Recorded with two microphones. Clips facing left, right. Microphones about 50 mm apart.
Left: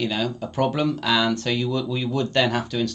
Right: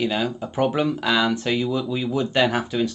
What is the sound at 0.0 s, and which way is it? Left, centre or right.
Speech, centre.